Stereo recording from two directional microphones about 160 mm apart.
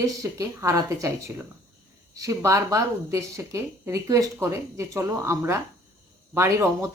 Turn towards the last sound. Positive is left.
turn(degrees=-15)  # may be behind; listen again after turning